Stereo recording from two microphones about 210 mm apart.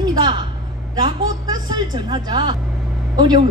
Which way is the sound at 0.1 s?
20° right (ahead or behind).